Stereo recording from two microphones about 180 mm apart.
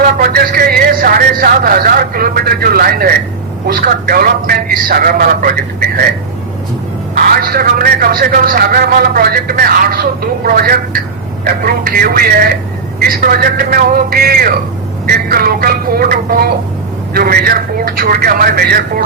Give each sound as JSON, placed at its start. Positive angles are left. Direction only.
{"t": 0.0, "sound": "a man's voice", "side_deg": -55}
{"t": 7.2, "sound": "speech", "side_deg": -55}